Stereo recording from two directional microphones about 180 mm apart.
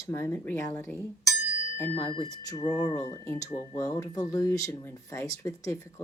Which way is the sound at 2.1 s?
25° left (ahead or behind).